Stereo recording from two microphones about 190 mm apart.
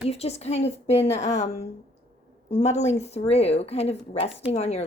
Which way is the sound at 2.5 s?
35° left (ahead or behind).